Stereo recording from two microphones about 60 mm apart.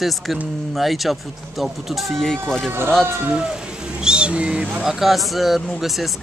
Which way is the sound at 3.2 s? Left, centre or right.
Centre.